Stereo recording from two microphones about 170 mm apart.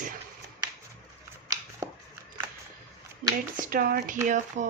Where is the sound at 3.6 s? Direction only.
55° right (ahead or behind).